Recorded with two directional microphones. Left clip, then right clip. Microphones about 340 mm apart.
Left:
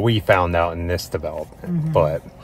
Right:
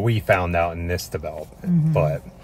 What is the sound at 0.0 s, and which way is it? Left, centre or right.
Speech, centre.